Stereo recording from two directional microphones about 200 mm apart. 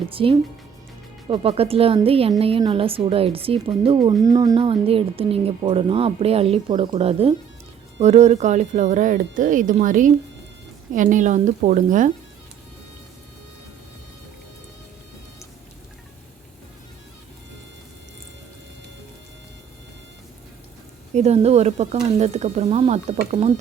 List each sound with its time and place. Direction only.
0.1 s speech: 25° right (ahead or behind)
21.1 s speech: 35° right (ahead or behind)